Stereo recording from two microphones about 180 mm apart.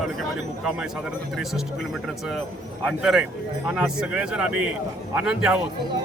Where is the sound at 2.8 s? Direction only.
5° right (ahead or behind).